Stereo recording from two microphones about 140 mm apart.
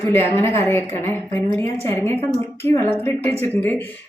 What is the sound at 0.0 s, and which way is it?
Speech, 15° left (ahead or behind).